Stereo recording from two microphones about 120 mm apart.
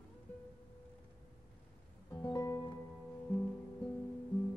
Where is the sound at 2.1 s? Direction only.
25° left (ahead or behind).